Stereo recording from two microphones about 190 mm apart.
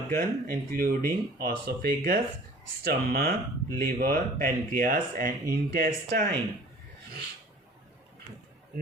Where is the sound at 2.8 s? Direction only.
55° right (ahead or behind).